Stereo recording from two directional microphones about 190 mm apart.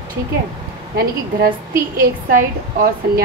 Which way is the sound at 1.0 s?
50° right (ahead or behind).